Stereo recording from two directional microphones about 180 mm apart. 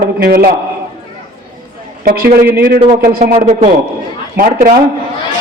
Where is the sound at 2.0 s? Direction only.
55° right (ahead or behind).